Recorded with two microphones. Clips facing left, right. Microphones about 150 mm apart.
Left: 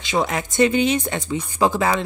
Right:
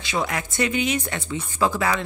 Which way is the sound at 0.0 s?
25° left (ahead or behind).